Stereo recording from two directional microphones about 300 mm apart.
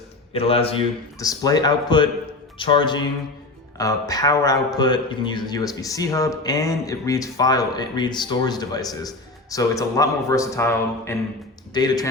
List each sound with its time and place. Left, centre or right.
0.3 s a man's voice: centre